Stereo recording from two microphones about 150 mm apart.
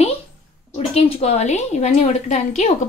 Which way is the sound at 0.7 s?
40° left (ahead or behind).